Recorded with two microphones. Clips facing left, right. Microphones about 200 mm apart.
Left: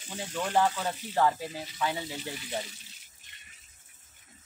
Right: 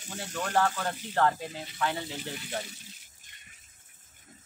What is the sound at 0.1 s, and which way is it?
Speech, 10° left (ahead or behind).